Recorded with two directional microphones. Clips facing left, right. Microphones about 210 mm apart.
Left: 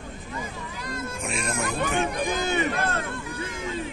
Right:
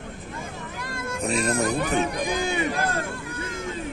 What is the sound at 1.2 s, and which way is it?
Speech, 35° right (ahead or behind).